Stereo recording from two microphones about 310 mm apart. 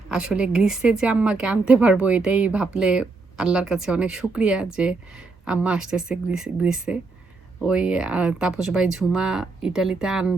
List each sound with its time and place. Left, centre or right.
0.1 s speech: centre